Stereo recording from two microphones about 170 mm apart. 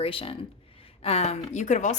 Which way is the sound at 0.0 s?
30° left (ahead or behind).